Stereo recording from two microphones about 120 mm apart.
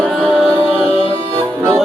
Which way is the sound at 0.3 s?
10° left (ahead or behind).